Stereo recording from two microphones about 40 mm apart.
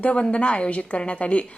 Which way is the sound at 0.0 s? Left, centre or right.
Left.